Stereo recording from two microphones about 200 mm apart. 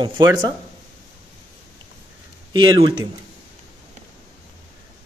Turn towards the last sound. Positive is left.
turn(degrees=-20)  # may be behind; listen again after turning